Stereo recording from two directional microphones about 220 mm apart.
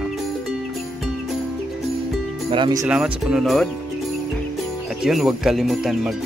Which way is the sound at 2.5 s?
20° right (ahead or behind).